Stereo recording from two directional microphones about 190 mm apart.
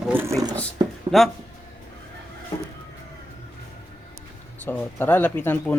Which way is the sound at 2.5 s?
25° left (ahead or behind).